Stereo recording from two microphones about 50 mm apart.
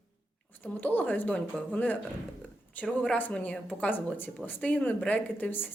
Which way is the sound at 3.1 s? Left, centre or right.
Left.